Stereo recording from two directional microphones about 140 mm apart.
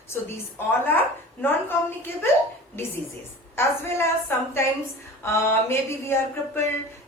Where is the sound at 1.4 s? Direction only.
15° left (ahead or behind).